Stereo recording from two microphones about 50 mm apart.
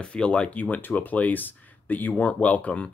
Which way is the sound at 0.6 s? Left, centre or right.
Left.